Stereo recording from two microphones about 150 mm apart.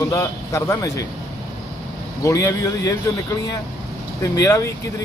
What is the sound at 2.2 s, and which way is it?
Speech, 20° left (ahead or behind).